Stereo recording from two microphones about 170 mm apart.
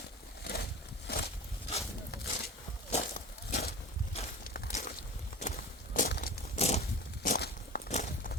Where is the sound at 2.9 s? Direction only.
40° left (ahead or behind).